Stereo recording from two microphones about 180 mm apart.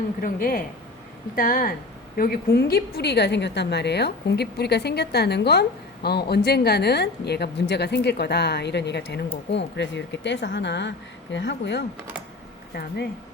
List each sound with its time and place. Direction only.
0.2 s a woman's voice: 55° left (ahead or behind); by 11.9 s 75° left (ahead or behind)